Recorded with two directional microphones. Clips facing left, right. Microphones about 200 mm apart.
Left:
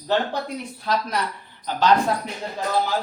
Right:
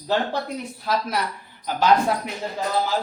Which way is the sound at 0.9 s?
5° right (ahead or behind).